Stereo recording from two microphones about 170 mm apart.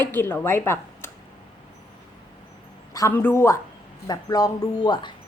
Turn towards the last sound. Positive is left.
turn(degrees=25)  # may be behind; listen again after turning